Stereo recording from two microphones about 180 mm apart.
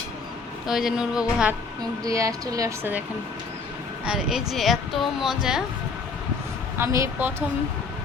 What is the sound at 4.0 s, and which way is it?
A woman's voice, 5° right (ahead or behind).